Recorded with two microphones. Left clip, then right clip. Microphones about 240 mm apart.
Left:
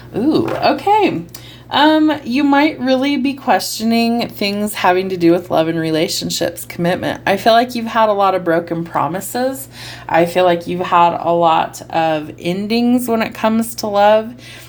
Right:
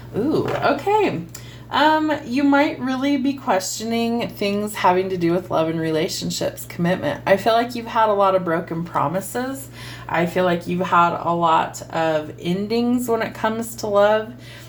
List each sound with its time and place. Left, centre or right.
0.6 s speech: left